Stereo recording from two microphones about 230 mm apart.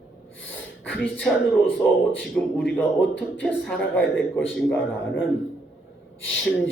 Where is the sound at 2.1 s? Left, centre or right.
Left.